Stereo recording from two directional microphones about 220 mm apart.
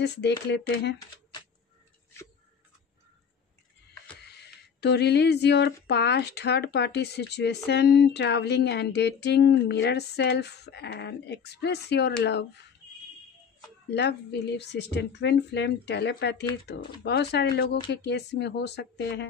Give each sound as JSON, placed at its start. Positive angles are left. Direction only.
{"t": 0.0, "sound": "speech", "side_deg": 50}
{"t": 4.2, "sound": "a sound", "side_deg": 50}
{"t": 5.9, "sound": "speech", "side_deg": 50}
{"t": 13.8, "sound": "speech", "side_deg": 50}